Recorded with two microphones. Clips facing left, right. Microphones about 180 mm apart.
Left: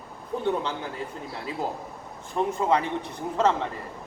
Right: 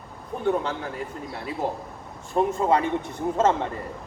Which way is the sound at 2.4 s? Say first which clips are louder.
Right 4 dB; 30° right (ahead or behind).